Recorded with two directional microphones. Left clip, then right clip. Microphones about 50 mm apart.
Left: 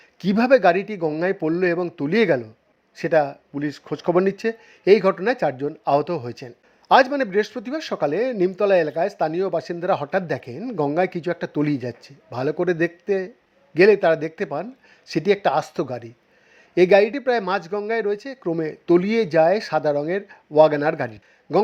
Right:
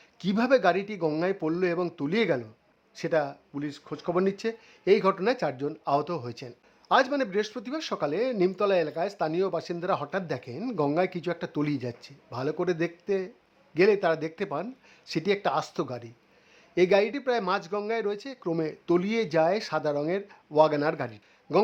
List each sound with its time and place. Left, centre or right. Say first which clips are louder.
0.2 s a man's voice: left 7 dB; left
3.6 s speech: left 8 dB; left
4.3 s speech: left 6 dB; left
6.8 s a man's voice: left 8 dB; left
7.3 s speech: left 7 dB; left
10.1 s speech: left 8 dB; left
12.3 s speech: left 7 dB; left
13.7 s a man's voice: left 8 dB; left
14.3 s speech: left 5 dB; left
16.7 s speech: left 8 dB; left
18.0 s speech: left 7 dB; left
18.6 s speech: left 8 dB; left
19.3 s a man's voice: left 7 dB; left